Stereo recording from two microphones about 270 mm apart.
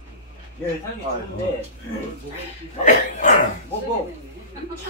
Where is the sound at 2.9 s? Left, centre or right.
Left.